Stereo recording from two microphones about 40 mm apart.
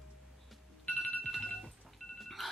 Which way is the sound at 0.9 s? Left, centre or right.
Centre.